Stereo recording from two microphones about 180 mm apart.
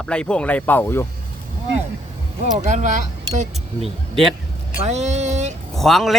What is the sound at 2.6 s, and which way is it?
Speech, 45° right (ahead or behind).